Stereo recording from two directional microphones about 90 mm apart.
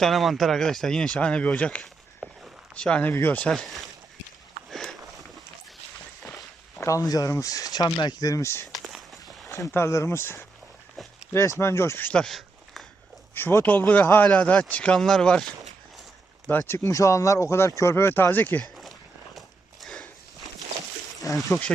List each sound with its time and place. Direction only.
0.0 s speech: centre (ahead or behind); by 1.8 s 15° left (ahead or behind)
2.2 s walk: centre (ahead or behind)
2.7 s speech: 10° left (ahead or behind)
3.5 s speech: 5° left (ahead or behind)
4.7 s a sound: 5° left (ahead or behind)
6.8 s speech: 40° left (ahead or behind)
8.7 s walk: centre (ahead or behind)
9.2 s speech: 35° left (ahead or behind)
12.1 s a sound: 5° left (ahead or behind)
13.3 s speech: 25° left (ahead or behind); by 15.4 s 5° left (ahead or behind)
16.5 s speech: 25° left (ahead or behind)
19.4 s walk: 5° left (ahead or behind)
21.3 s speech: 40° left (ahead or behind)